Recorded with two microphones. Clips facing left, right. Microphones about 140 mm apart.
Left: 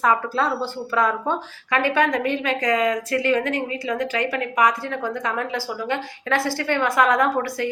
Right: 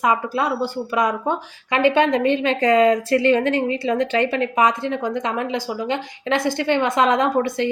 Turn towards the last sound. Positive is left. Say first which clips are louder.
# right 2 dB
turn(degrees=-20)  # may be behind; listen again after turning